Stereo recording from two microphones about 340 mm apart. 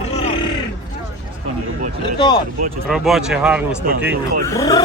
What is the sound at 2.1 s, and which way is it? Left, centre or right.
Speech, centre.